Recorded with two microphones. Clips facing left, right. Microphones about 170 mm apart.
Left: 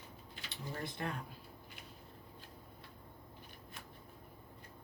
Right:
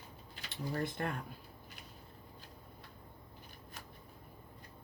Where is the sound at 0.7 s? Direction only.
50° right (ahead or behind).